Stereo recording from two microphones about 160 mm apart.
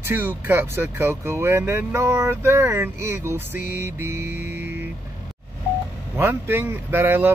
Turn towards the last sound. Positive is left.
turn(degrees=-15)  # may be behind; listen again after turning